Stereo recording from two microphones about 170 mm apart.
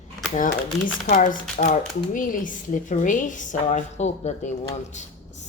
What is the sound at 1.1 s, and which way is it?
Speech, 50° left (ahead or behind).